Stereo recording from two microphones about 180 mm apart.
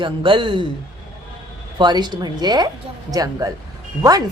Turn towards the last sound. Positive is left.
turn(degrees=-20)  # may be behind; listen again after turning